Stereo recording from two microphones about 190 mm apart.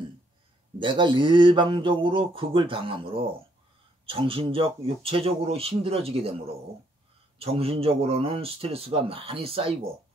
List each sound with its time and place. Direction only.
0.7 s speech: 25° right (ahead or behind)